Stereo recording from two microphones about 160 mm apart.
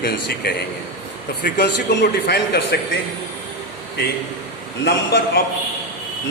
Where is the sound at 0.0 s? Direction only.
85° left.